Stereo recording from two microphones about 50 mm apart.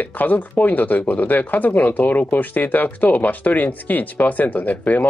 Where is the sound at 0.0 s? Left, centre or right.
Left.